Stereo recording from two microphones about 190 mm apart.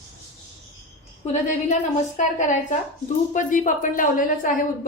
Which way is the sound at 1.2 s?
35° left (ahead or behind).